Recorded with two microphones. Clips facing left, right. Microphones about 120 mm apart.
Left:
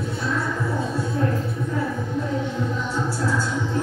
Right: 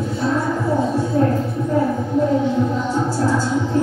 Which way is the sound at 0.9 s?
30° right (ahead or behind).